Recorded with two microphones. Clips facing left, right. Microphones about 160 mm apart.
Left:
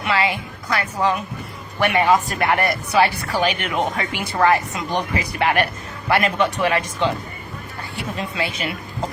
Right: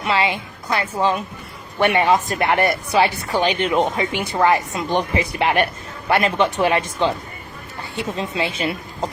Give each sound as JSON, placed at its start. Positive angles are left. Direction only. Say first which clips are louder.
{"t": 0.0, "sound": "a woman's voice", "louder": "right 1 dB", "side_deg": -25}